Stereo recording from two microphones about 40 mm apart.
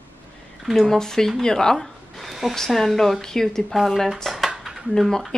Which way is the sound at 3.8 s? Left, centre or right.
Centre.